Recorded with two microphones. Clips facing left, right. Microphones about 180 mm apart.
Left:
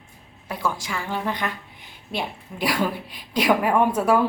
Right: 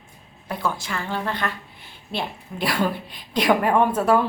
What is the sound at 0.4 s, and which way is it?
A woman's voice, 10° left (ahead or behind).